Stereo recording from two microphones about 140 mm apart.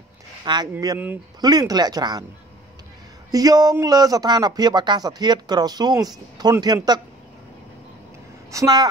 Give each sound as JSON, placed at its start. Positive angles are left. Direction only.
{"t": 0.5, "sound": "a man's voice", "side_deg": -30}
{"t": 0.9, "sound": "speech", "side_deg": -15}
{"t": 1.4, "sound": "a man's voice", "side_deg": -30}
{"t": 3.3, "sound": "a man's voice", "side_deg": -25}
{"t": 8.5, "sound": "a man's voice", "side_deg": -25}